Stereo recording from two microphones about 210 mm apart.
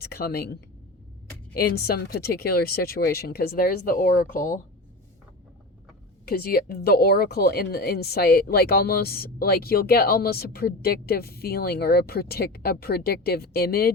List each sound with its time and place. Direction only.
0.0 s speech: 45° left (ahead or behind)
6.2 s speech: 45° left (ahead or behind)